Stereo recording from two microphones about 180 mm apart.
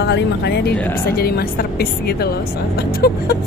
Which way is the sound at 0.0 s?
70° left (ahead or behind).